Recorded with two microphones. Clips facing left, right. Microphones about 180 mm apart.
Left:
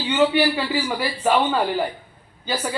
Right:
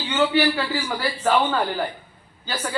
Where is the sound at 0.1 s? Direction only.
15° left (ahead or behind).